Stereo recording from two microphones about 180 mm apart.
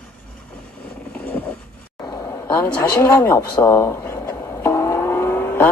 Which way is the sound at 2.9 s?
20° left (ahead or behind).